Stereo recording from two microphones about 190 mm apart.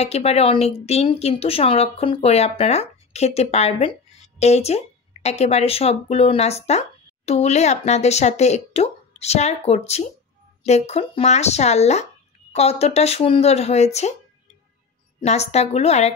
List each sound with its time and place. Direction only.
0.0 s a woman's voice: 35° left (ahead or behind)
15.1 s a woman's voice: 35° left (ahead or behind)